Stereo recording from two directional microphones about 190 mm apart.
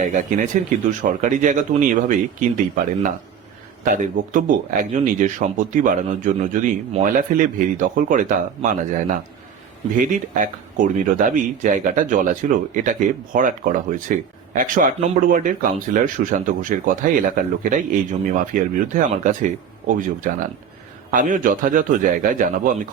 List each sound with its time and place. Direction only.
0.1 s speech: 40° right (ahead or behind)